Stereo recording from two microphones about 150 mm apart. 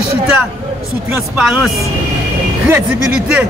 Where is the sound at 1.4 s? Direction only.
5° right (ahead or behind).